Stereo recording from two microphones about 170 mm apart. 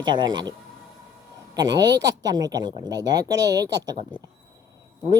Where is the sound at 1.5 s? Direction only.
25° right (ahead or behind).